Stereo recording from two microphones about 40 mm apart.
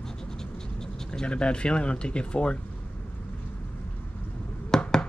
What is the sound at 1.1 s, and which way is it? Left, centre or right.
Speech, left.